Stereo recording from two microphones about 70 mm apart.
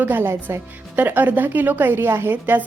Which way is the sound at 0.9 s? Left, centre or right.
Right.